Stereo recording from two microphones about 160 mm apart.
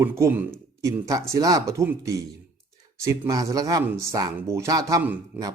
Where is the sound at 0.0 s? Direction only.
15° right (ahead or behind).